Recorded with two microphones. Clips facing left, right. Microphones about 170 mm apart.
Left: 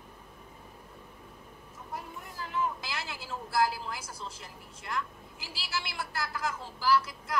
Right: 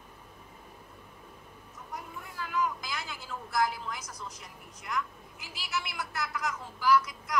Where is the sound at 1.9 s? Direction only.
30° left (ahead or behind).